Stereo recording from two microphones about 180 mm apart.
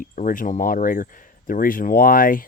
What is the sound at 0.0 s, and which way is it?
Speech, 50° left (ahead or behind).